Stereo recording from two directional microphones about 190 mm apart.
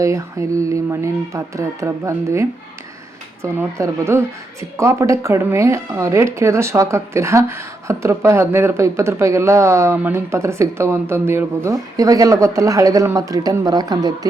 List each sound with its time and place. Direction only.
0.0 s speech: 15° right (ahead or behind)